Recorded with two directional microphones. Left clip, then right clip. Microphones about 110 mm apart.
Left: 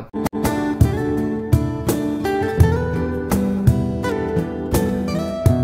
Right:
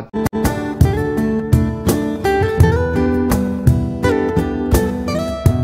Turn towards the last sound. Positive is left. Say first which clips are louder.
# right 2 dB
turn(degrees=0)  # may be behind; listen again after turning